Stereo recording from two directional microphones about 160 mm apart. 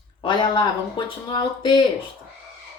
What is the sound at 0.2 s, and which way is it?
A woman's voice, 30° left (ahead or behind).